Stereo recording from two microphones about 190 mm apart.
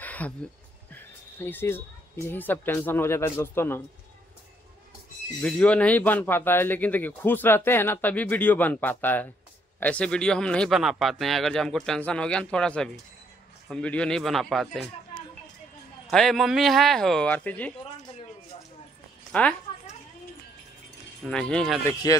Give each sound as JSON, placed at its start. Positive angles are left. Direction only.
{"t": 0.0, "sound": "a sound", "side_deg": 10}
{"t": 0.9, "sound": "speech", "side_deg": 10}
{"t": 5.4, "sound": "a man's voice", "side_deg": 5}
{"t": 16.1, "sound": "a man's voice", "side_deg": 0}
{"t": 19.3, "sound": "speech", "side_deg": 5}
{"t": 21.2, "sound": "a man's voice", "side_deg": 5}
{"t": 22.0, "sound": "speech", "side_deg": 20}